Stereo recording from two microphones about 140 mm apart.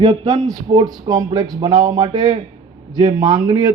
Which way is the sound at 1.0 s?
25° right (ahead or behind).